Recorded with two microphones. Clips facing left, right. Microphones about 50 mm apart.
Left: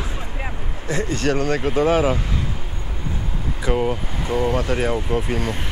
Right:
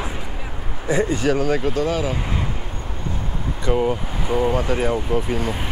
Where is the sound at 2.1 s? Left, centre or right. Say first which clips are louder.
Even; centre.